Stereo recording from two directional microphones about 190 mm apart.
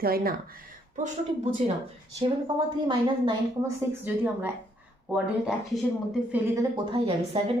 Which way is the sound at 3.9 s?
10° right (ahead or behind).